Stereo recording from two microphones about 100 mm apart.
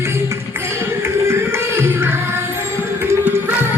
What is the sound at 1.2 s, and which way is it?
Music, 25° right (ahead or behind).